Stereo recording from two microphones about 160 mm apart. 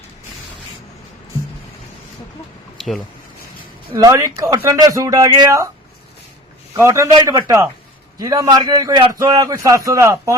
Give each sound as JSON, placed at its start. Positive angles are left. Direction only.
{"t": 2.7, "sound": "a sound", "side_deg": 0}
{"t": 3.9, "sound": "a man's voice", "side_deg": -20}
{"t": 6.7, "sound": "a man's voice", "side_deg": -20}